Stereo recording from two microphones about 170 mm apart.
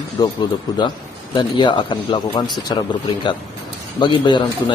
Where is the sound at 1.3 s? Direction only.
25° left (ahead or behind).